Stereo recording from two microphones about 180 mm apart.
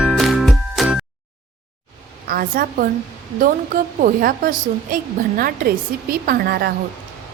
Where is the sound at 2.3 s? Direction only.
55° right (ahead or behind).